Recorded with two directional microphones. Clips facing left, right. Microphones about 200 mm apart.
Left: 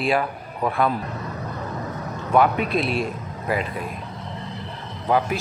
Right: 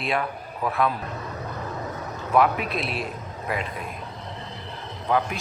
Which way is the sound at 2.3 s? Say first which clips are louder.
Left 3 dB; centre (ahead or behind).